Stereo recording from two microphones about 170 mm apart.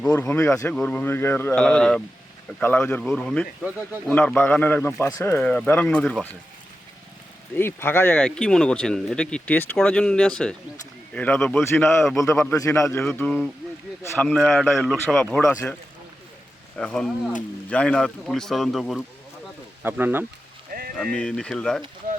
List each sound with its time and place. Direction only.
0.0 s speech: 10° left (ahead or behind)
7.5 s speech: 15° left (ahead or behind)
11.6 s speech: 15° left (ahead or behind); by 20.2 s 10° right (ahead or behind)
20.9 s speech: 5° left (ahead or behind)